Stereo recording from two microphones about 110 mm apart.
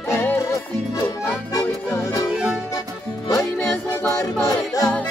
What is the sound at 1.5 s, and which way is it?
Music, 30° left (ahead or behind).